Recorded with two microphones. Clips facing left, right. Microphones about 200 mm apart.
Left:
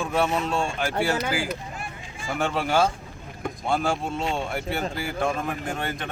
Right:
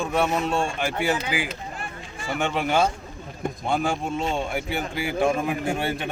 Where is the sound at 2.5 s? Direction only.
15° right (ahead or behind).